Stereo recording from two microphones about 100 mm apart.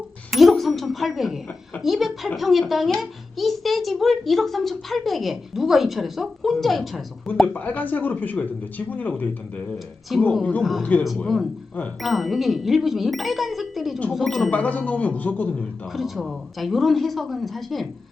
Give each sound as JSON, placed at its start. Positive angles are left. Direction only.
{"t": 0.3, "sound": "a woman's voice", "side_deg": 0}
{"t": 7.4, "sound": "speech", "side_deg": 15}
{"t": 10.1, "sound": "a child's voice", "side_deg": 0}
{"t": 12.0, "sound": "a child's voice", "side_deg": 0}
{"t": 14.5, "sound": "speech", "side_deg": 15}
{"t": 15.9, "sound": "a child's voice", "side_deg": 0}